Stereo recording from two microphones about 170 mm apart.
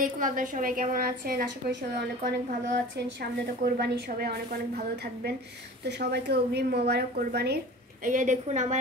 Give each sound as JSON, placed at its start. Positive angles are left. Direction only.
{"t": 0.0, "sound": "a woman's voice", "side_deg": -50}
{"t": 5.9, "sound": "a woman's voice", "side_deg": -85}
{"t": 8.1, "sound": "a woman's voice", "side_deg": -50}